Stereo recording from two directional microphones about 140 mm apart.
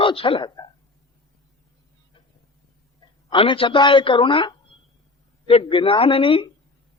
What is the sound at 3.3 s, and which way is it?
Speech, 40° left (ahead or behind).